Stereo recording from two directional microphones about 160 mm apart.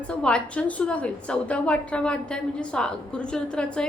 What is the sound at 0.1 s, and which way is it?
A woman's voice, 5° left (ahead or behind).